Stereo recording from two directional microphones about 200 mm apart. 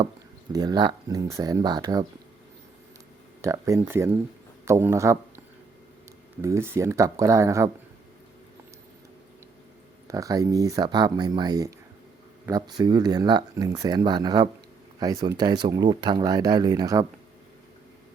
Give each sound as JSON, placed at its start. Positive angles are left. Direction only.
{"t": 0.5, "sound": "speech", "side_deg": -20}
{"t": 3.4, "sound": "speech", "side_deg": -15}
{"t": 6.4, "sound": "speech", "side_deg": -15}
{"t": 10.1, "sound": "speech", "side_deg": -15}